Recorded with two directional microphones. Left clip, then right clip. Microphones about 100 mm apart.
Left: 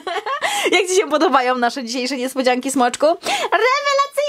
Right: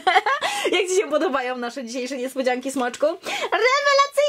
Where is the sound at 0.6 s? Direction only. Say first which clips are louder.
Left 5 dB; 30° left (ahead or behind).